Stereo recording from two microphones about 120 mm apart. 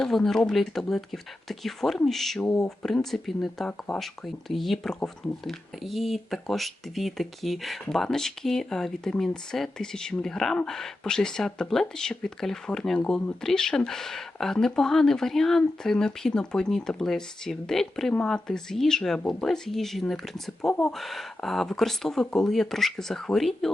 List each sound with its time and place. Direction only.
0.0 s speech: 5° left (ahead or behind)